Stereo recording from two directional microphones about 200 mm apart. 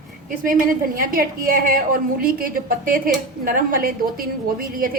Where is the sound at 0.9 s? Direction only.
45° right (ahead or behind).